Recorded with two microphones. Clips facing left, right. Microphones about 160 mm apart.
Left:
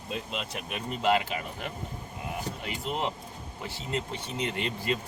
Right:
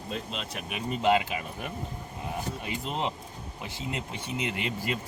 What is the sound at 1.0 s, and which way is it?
Speech, 20° right (ahead or behind).